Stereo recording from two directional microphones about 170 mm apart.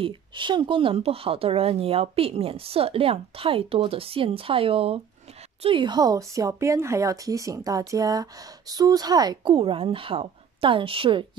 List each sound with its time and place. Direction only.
0.0 s a woman's voice: 30° right (ahead or behind)